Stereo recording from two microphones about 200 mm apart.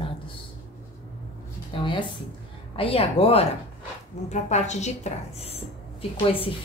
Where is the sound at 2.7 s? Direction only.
30° left (ahead or behind).